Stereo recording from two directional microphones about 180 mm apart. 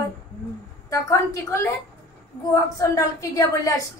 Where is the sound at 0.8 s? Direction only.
15° left (ahead or behind).